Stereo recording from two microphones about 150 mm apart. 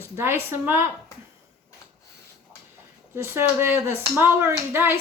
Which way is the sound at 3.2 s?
15° right (ahead or behind).